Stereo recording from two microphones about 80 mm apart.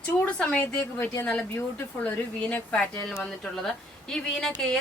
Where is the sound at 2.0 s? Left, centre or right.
Left.